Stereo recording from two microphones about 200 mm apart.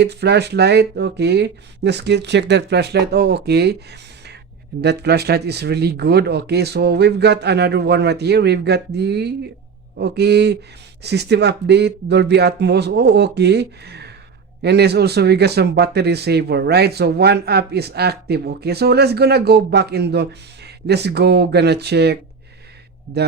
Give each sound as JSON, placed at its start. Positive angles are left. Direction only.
{"t": 0.0, "sound": "a man's voice", "side_deg": -55}